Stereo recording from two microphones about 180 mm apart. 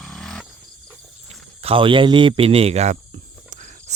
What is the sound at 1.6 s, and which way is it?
Speech, 30° right (ahead or behind).